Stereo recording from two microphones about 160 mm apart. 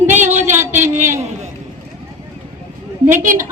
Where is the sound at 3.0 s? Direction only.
55° right (ahead or behind).